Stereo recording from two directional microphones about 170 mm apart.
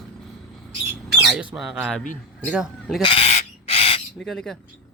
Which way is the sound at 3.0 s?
35° left (ahead or behind).